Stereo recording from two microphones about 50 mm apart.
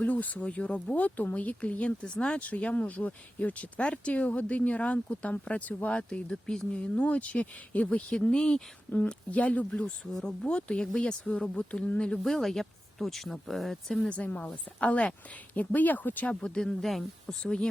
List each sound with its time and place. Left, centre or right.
0.0 s speech: left; by 2.4 s centre
2.4 s speech: left
8.1 s speech: centre
9.3 s speech: left
12.2 s speech: centre
14.1 s speech: left
15.5 s speech: left
16.2 s speech: centre
16.8 s speech: centre
17.4 s speech: centre